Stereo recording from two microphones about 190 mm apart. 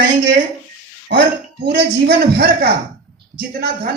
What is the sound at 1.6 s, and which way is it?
Speech, 65° right (ahead or behind).